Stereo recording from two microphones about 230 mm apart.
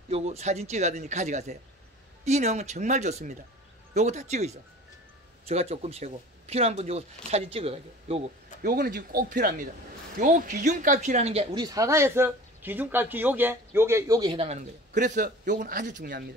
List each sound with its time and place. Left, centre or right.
0.1 s speech: right
8.6 s speech: right